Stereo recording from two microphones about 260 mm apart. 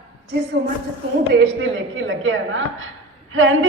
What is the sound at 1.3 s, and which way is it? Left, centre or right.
A woman's voice, right.